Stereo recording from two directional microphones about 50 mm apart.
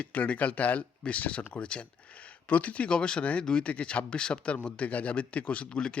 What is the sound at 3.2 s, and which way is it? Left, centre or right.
A man's voice, left.